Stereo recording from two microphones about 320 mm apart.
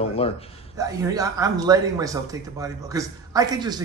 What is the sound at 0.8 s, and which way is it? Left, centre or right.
A man's voice, centre.